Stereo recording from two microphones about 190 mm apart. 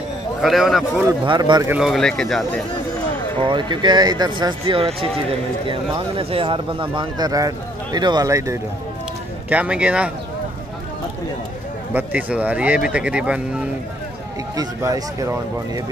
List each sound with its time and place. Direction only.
0.4 s speech: centre (ahead or behind)
1.2 s speech: 25° right (ahead or behind)
1.7 s speech: centre (ahead or behind)
3.3 s speech: 25° right (ahead or behind); by 10.1 s 5° right (ahead or behind)
11.9 s speech: 10° right (ahead or behind)
14.6 s speech: 20° right (ahead or behind)